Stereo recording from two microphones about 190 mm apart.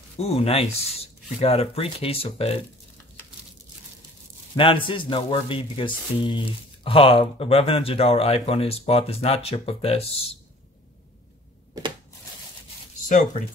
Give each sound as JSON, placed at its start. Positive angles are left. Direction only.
{"t": 0.2, "sound": "speech", "side_deg": 30}
{"t": 4.6, "sound": "speech", "side_deg": 25}
{"t": 13.1, "sound": "speech", "side_deg": 40}